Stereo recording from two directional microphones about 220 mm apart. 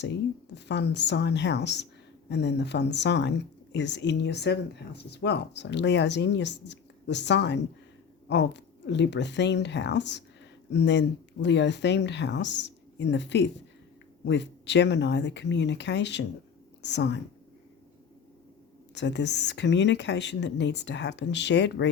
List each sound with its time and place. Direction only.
0.0 s speech: 50° left (ahead or behind)
18.9 s speech: 50° left (ahead or behind)